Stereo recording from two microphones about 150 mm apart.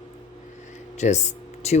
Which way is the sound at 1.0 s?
50° left (ahead or behind).